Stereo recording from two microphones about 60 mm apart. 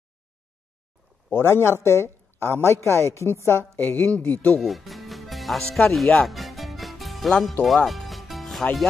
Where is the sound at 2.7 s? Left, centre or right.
Left.